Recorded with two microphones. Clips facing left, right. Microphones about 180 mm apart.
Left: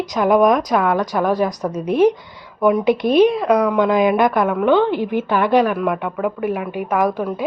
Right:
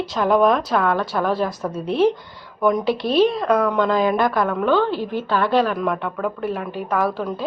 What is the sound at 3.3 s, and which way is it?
A woman's voice, 5° left (ahead or behind).